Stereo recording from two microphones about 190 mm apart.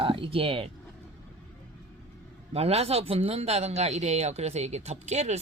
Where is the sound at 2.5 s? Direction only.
35° right (ahead or behind).